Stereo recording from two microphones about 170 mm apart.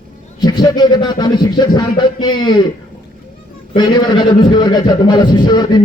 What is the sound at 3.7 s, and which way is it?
A man's voice, 25° left (ahead or behind).